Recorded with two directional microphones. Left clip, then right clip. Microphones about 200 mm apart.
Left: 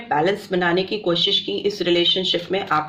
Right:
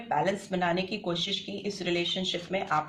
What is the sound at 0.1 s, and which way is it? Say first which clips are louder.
Speech: left 8 dB; 35° left (ahead or behind).